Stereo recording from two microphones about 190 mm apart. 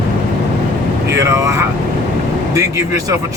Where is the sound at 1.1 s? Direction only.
15° right (ahead or behind).